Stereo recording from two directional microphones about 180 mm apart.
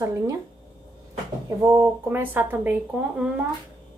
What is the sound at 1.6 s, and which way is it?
A woman's voice, 15° right (ahead or behind).